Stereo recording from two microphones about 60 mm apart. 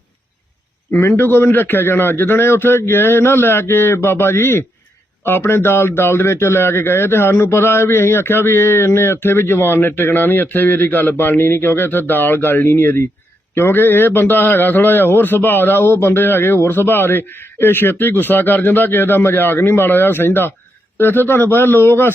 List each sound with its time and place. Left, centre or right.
0.9 s a man's voice: left